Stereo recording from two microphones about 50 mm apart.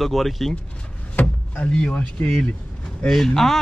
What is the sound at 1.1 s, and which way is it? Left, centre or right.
Vehicle, left.